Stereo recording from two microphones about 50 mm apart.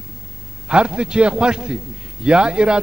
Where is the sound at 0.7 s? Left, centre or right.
Right.